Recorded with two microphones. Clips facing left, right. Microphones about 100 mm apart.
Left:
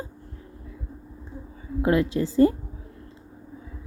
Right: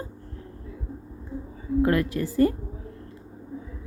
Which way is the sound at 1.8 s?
20° left (ahead or behind).